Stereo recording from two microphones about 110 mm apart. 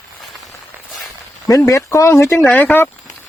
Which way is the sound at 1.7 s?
30° left (ahead or behind).